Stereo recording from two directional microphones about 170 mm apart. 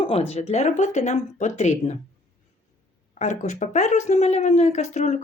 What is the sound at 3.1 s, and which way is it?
Speech, 45° left (ahead or behind).